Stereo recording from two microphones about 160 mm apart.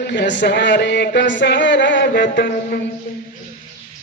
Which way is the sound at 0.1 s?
90° left.